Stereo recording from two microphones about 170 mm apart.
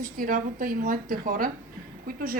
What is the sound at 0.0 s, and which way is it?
A woman's voice, 55° right (ahead or behind).